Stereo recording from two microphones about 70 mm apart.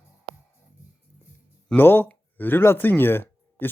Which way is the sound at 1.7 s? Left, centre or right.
Left.